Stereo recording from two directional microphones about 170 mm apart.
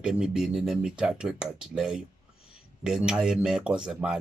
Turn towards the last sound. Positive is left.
turn(degrees=-5)  # may be behind; listen again after turning